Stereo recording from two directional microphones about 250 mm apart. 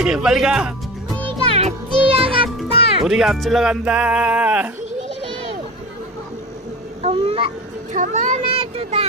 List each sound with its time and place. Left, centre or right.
0.0 s speech: centre
1.2 s music: right
3.1 s speech: centre
7.0 s a sound: right
7.9 s speech: right